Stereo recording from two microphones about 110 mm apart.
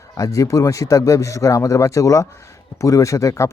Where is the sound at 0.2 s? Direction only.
30° left (ahead or behind).